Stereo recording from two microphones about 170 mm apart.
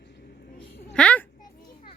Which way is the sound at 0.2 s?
65° left (ahead or behind).